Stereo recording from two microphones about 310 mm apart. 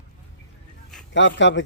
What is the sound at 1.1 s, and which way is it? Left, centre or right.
Speech, left.